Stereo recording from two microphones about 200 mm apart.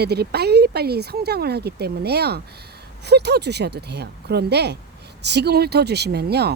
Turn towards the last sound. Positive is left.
turn(degrees=-55)  # may be behind; listen again after turning